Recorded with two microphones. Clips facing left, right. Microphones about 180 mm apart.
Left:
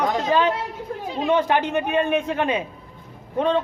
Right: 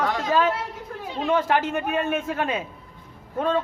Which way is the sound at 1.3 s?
5° right (ahead or behind).